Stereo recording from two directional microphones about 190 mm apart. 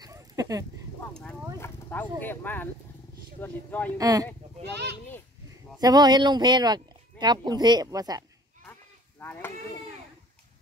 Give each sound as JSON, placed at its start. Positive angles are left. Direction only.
{"t": 0.0, "sound": "a sound", "side_deg": -20}
{"t": 1.6, "sound": "a sound", "side_deg": 10}
{"t": 2.2, "sound": "speech", "side_deg": 10}
{"t": 4.0, "sound": "speech", "side_deg": -20}
{"t": 5.8, "sound": "speech", "side_deg": -20}
{"t": 9.2, "sound": "speech", "side_deg": 10}